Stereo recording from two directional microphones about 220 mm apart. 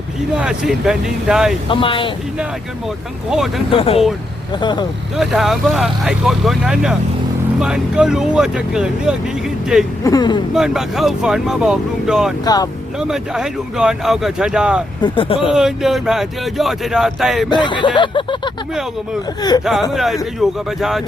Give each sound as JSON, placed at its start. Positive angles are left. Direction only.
{"t": 0.3, "sound": "speech", "side_deg": -5}
{"t": 1.7, "sound": "speech", "side_deg": 25}
{"t": 3.2, "sound": "speech", "side_deg": 0}
{"t": 3.7, "sound": "speech", "side_deg": 25}
{"t": 5.1, "sound": "speech", "side_deg": 0}
{"t": 10.0, "sound": "speech", "side_deg": 15}
{"t": 10.5, "sound": "speech", "side_deg": 0}
{"t": 15.0, "sound": "speech", "side_deg": 25}
{"t": 15.4, "sound": "speech", "side_deg": 0}
{"t": 17.5, "sound": "speech", "side_deg": 20}
{"t": 19.9, "sound": "speech", "side_deg": 0}